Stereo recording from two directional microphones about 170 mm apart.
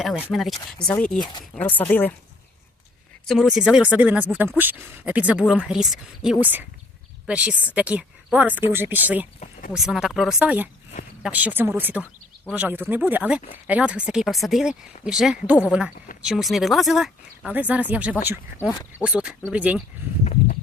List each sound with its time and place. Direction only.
0.0 s speech: centre (ahead or behind)
1.2 s speech: 25° left (ahead or behind)
1.5 s speech: 10° left (ahead or behind)
3.2 s speech: centre (ahead or behind)
18.7 s speech: 20° left (ahead or behind)
19.0 s speech: 5° right (ahead or behind)
20.2 s walk: 40° left (ahead or behind)